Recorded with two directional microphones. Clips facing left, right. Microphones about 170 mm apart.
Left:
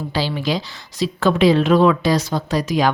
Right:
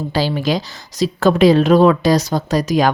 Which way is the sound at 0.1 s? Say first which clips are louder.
Right 3 dB; 45° right (ahead or behind).